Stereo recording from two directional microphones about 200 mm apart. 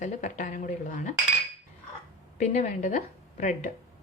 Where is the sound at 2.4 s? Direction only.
35° left (ahead or behind).